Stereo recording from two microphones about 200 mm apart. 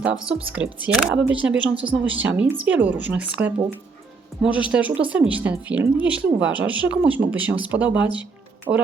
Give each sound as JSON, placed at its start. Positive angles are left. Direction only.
{"t": 0.0, "sound": "speech", "side_deg": -5}
{"t": 8.7, "sound": "speech", "side_deg": -20}